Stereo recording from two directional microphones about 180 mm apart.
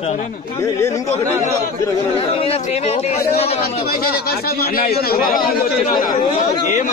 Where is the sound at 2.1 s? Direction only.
30° left (ahead or behind).